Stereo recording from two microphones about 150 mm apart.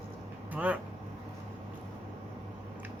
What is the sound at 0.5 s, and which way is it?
Speech, 10° right (ahead or behind).